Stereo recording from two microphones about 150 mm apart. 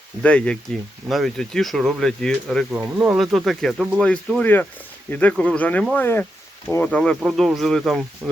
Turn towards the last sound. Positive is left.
turn(degrees=0)  # may be behind; listen again after turning